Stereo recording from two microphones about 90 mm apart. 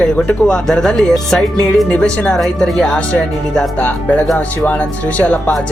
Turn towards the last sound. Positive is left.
turn(degrees=15)  # may be behind; listen again after turning